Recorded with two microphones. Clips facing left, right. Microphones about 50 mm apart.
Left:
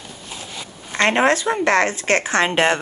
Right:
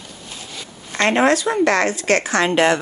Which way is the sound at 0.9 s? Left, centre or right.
Left.